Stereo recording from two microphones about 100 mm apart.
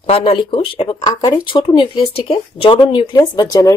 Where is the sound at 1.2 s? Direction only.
45° left (ahead or behind).